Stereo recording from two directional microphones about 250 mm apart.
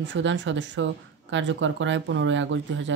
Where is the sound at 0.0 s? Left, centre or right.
Right.